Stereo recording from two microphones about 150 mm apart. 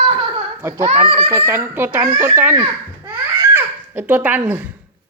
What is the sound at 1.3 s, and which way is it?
Speech, 15° right (ahead or behind).